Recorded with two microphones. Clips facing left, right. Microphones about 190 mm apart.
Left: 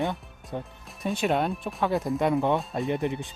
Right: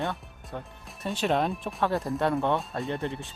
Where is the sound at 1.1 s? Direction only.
5° left (ahead or behind).